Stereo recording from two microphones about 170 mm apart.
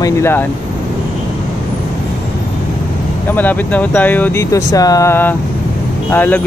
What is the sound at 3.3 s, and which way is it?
Speech, 10° left (ahead or behind).